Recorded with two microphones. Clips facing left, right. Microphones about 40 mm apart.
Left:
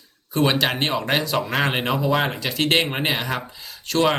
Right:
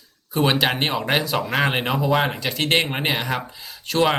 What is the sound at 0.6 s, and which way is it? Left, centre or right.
Speech, centre.